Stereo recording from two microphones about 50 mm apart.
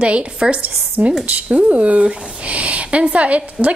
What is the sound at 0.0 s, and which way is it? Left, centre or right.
Speech, right.